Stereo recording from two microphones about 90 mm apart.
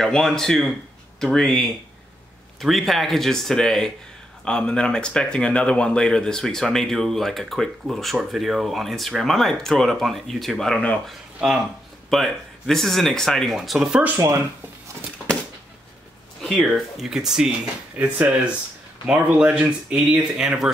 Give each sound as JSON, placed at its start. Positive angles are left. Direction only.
{"t": 0.0, "sound": "speech", "side_deg": 5}
{"t": 11.1, "sound": "speech", "side_deg": -5}
{"t": 14.1, "sound": "speech", "side_deg": -35}
{"t": 16.3, "sound": "speech", "side_deg": 0}